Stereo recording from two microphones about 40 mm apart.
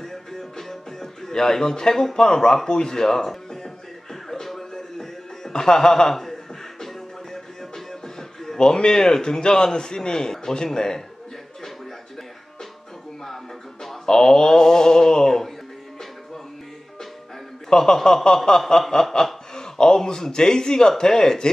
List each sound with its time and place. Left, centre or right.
0.0 s music: centre
5.5 s a man's voice: centre
6.8 s music: centre
8.5 s a man's voice: centre
14.0 s a man's voice: centre
17.6 s a man's voice: centre